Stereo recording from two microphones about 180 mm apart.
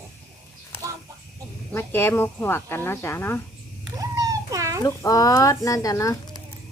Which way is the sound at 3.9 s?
20° right (ahead or behind).